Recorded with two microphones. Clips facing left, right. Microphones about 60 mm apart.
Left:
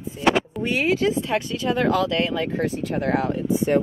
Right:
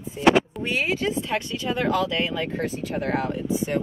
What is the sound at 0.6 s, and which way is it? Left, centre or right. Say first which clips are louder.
Speech: left 4 dB; centre.